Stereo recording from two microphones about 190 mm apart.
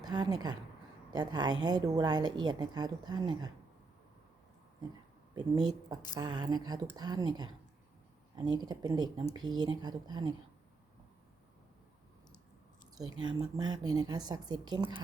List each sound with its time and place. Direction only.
0.0 s a woman's voice: 20° right (ahead or behind)
5.3 s a woman's voice: 20° right (ahead or behind)
13.6 s a woman's voice: 20° right (ahead or behind)